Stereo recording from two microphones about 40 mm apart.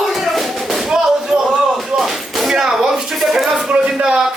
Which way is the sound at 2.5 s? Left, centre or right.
Centre.